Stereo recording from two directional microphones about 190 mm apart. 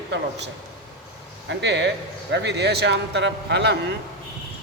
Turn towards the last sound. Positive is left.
turn(degrees=-65)  # may be behind; listen again after turning